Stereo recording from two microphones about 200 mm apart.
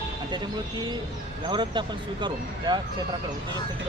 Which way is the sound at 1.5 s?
25° right (ahead or behind).